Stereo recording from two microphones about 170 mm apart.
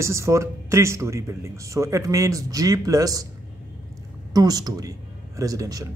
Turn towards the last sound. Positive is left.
turn(degrees=-20)  # may be behind; listen again after turning